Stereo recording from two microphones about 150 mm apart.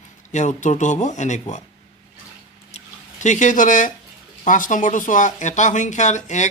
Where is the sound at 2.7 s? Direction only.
50° left (ahead or behind).